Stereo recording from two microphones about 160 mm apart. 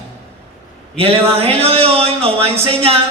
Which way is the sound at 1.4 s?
40° right (ahead or behind).